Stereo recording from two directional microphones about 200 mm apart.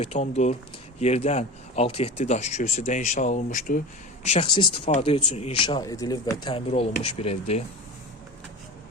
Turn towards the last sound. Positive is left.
turn(degrees=30)  # may be behind; listen again after turning